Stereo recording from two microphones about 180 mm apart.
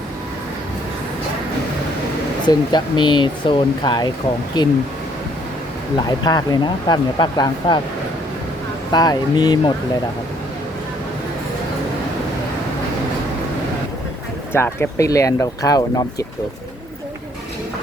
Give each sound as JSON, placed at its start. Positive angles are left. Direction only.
{"t": 2.5, "sound": "speech", "side_deg": 25}
{"t": 6.1, "sound": "speech", "side_deg": 20}
{"t": 8.9, "sound": "speech", "side_deg": 20}
{"t": 14.5, "sound": "speech", "side_deg": 15}